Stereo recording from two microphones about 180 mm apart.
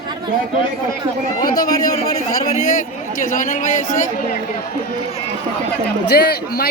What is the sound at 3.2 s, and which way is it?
Speech, 45° left (ahead or behind).